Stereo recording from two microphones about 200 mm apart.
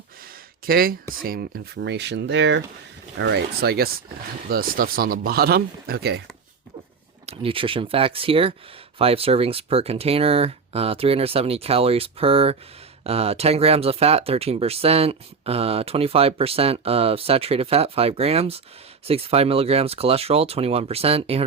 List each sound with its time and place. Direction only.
0.6 s speech: 45° right (ahead or behind)
7.3 s speech: 25° right (ahead or behind)